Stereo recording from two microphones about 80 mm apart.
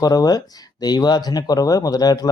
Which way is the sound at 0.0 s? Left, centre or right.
Left.